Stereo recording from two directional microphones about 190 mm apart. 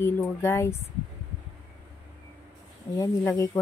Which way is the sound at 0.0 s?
15° left (ahead or behind).